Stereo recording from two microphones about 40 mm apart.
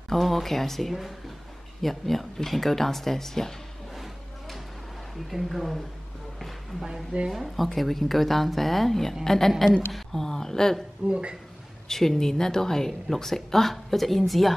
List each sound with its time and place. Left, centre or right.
0.1 s a woman's voice: centre
3.9 s a sound: centre
5.1 s a woman's voice: centre
7.2 s a woman's voice: centre
11.1 s speech: right
11.9 s speech: centre